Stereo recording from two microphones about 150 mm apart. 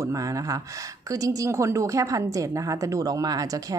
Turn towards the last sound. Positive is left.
turn(degrees=-25)  # may be behind; listen again after turning